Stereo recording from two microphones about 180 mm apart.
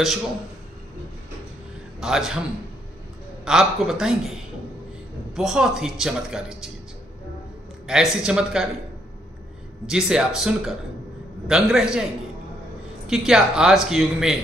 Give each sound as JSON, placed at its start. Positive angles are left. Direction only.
{"t": 2.0, "sound": "speech", "side_deg": -5}
{"t": 3.4, "sound": "speech", "side_deg": -5}
{"t": 5.3, "sound": "speech", "side_deg": -5}
{"t": 7.8, "sound": "speech", "side_deg": -5}
{"t": 9.8, "sound": "speech", "side_deg": -5}